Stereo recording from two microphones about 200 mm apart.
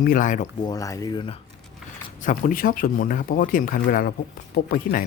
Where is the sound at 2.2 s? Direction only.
40° left (ahead or behind).